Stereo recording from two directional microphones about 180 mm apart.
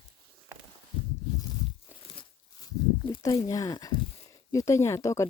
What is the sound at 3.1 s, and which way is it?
Speech, 25° left (ahead or behind).